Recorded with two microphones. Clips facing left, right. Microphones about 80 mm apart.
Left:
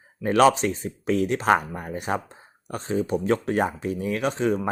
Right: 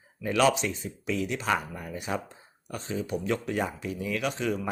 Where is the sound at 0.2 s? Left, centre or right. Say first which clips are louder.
Left 6 dB; left.